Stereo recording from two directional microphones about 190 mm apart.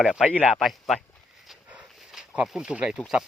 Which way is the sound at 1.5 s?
5° right (ahead or behind).